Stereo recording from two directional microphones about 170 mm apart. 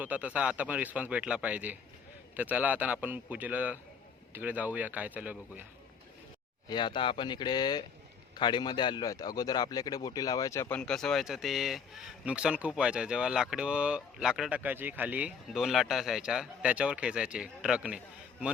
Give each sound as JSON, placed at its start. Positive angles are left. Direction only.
{"t": 0.0, "sound": "speech", "side_deg": -10}
{"t": 6.7, "sound": "speech", "side_deg": 25}